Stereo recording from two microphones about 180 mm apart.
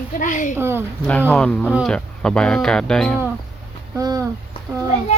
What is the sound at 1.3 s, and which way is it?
Speech, 5° left (ahead or behind).